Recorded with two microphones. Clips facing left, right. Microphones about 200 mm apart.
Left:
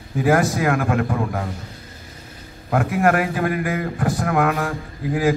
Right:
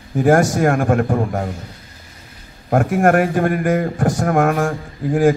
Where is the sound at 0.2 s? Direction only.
45° right (ahead or behind).